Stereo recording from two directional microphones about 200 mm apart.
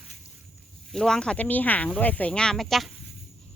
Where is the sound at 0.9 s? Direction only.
Centre (ahead or behind).